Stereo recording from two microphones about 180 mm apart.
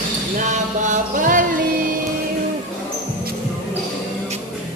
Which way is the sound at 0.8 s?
45° right (ahead or behind).